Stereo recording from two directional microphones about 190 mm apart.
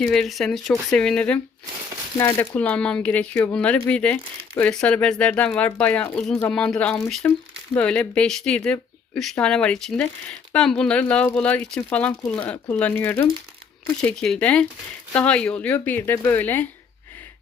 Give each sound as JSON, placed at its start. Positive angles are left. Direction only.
{"t": 0.0, "sound": "speech", "side_deg": 5}